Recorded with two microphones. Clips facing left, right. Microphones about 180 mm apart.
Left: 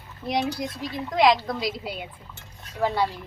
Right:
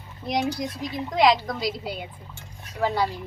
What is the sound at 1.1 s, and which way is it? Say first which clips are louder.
Speech: even; centre (ahead or behind).